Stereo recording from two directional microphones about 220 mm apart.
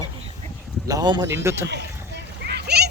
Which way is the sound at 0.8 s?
20° right (ahead or behind).